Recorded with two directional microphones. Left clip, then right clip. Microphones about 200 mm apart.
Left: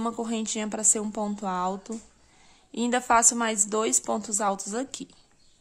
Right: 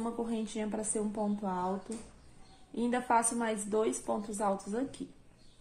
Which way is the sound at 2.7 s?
35° left (ahead or behind).